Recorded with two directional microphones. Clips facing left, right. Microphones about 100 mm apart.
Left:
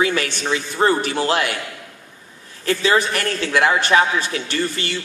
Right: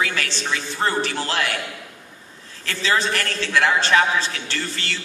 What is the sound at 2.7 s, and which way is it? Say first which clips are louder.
A man's voice: left 4 dB; 15° left (ahead or behind).